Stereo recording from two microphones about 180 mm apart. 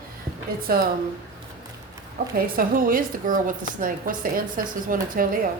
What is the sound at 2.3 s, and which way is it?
A woman's voice, 55° right (ahead or behind).